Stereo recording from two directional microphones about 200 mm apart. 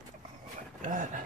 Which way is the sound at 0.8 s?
40° right (ahead or behind).